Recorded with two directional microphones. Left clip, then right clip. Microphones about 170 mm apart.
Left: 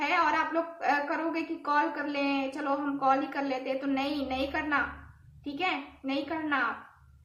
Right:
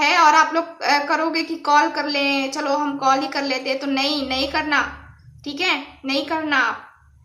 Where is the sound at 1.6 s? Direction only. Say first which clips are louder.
Right 11 dB; 20° right (ahead or behind).